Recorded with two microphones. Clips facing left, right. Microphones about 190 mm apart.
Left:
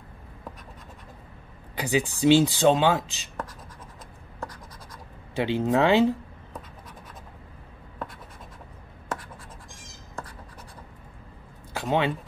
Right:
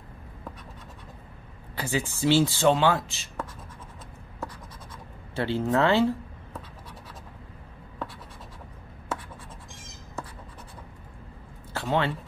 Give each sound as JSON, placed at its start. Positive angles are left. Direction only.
{"t": 1.8, "sound": "speech", "side_deg": 15}
{"t": 5.3, "sound": "speech", "side_deg": 15}
{"t": 11.7, "sound": "a sound", "side_deg": 15}